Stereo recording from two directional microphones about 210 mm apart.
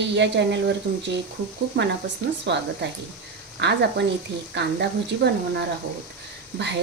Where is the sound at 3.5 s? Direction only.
55° right (ahead or behind).